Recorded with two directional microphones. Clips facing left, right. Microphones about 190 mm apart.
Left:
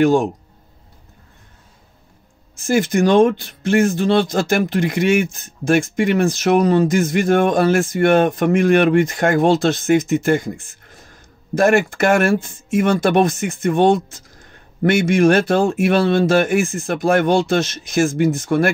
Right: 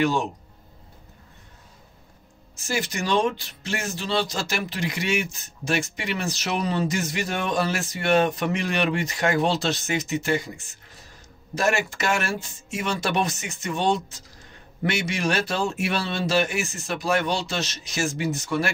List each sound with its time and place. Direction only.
0.0 s speech: 50° left (ahead or behind)
2.5 s speech: 50° left (ahead or behind)